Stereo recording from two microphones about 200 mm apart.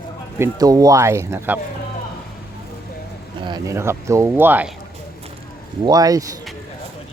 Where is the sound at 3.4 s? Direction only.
20° right (ahead or behind).